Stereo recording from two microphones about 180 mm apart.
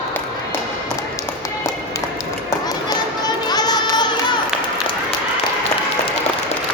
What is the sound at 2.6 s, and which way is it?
Run, 20° left (ahead or behind).